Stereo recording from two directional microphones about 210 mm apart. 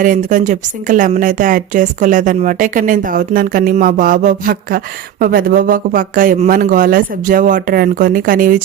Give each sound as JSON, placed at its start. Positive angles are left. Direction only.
{"t": 0.0, "sound": "a woman's voice", "side_deg": -40}